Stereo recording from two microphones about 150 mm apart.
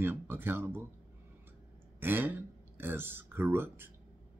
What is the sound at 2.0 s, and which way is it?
Speech, 15° right (ahead or behind).